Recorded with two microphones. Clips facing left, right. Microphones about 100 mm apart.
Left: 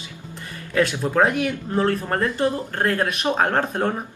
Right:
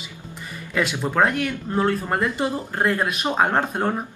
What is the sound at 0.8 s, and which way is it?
Speech, 15° right (ahead or behind).